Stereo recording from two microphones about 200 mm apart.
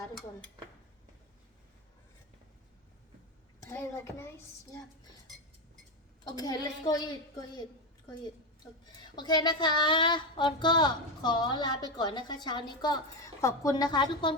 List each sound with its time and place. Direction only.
3.6 s speech: 15° left (ahead or behind)
6.2 s speech: 20° left (ahead or behind)